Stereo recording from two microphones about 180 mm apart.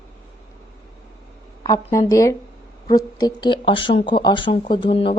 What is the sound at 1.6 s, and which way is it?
A woman's voice, 20° left (ahead or behind).